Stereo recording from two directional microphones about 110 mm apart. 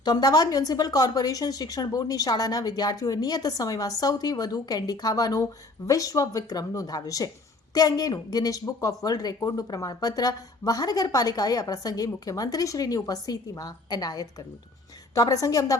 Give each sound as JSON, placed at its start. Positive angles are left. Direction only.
{"t": 0.0, "sound": "a woman's voice", "side_deg": 40}